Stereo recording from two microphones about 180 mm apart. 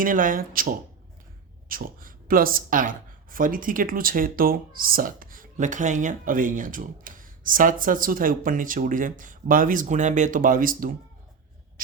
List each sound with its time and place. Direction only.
0.0 s speech: 50° right (ahead or behind)